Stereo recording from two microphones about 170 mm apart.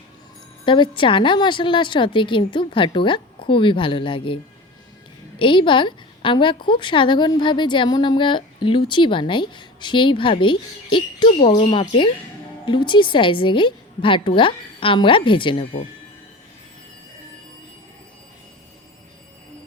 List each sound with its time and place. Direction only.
0.6 s a woman's voice: 30° left (ahead or behind)
5.4 s a woman's voice: 30° left (ahead or behind)